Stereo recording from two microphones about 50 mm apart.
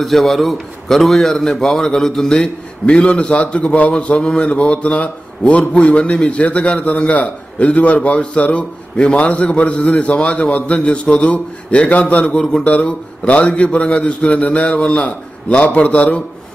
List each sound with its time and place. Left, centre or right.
0.0 s a man's voice: centre; by 16.2 s left